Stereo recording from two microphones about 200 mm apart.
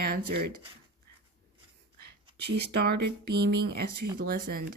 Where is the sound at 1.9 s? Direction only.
55° right (ahead or behind).